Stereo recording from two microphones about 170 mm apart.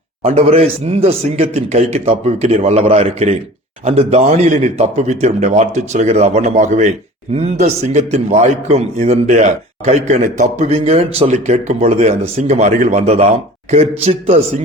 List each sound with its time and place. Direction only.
0.2 s a man's voice: 40° right (ahead or behind)